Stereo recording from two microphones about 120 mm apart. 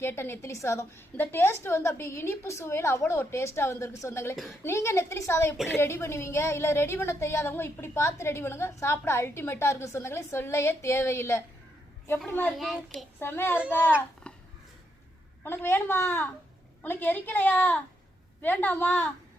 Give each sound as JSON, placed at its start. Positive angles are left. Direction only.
{"t": 0.0, "sound": "a woman's voice", "side_deg": 20}
{"t": 12.5, "sound": "a child's voice", "side_deg": 0}
{"t": 13.1, "sound": "a woman's voice", "side_deg": 20}
{"t": 14.3, "sound": "a sound", "side_deg": 10}
{"t": 15.4, "sound": "a woman's voice", "side_deg": 20}